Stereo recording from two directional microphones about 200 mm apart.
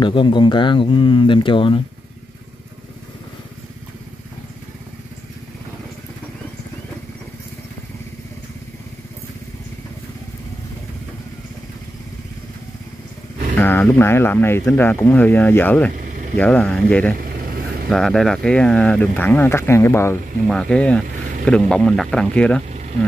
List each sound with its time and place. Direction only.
0.0 s speech: 25° left (ahead or behind)
13.6 s speech: 10° left (ahead or behind)
17.2 s vehicle: 50° right (ahead or behind)
17.8 s speech: centre (ahead or behind)
22.7 s a sound: 35° right (ahead or behind)